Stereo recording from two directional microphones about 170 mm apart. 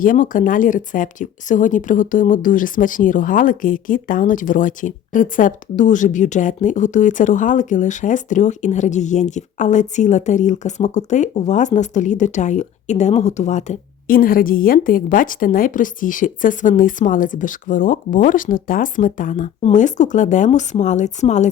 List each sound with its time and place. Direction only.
0.0 s speech: 55° left (ahead or behind)